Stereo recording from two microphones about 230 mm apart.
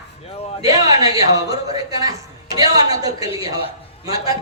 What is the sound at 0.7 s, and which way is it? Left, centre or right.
Speech, centre.